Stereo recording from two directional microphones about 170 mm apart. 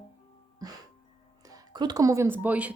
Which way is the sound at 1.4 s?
20° right (ahead or behind).